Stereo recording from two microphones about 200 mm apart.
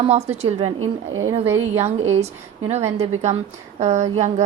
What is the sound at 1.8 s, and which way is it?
A woman's voice, 35° right (ahead or behind).